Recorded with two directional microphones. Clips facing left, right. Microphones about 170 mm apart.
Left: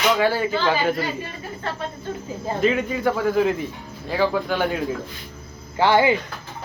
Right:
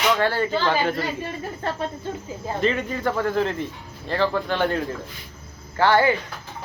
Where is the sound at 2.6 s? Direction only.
5° left (ahead or behind).